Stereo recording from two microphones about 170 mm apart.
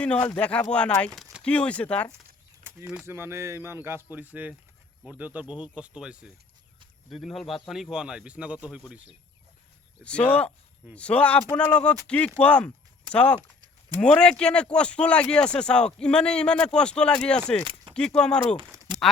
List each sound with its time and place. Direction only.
0.3 s speech: 10° left (ahead or behind)
2.6 s speech: 5° right (ahead or behind)
10.0 s speech: 5° left (ahead or behind)
18.6 s a sound: 20° right (ahead or behind)